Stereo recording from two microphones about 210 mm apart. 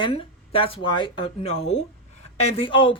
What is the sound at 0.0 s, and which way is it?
A woman's voice, 25° left (ahead or behind).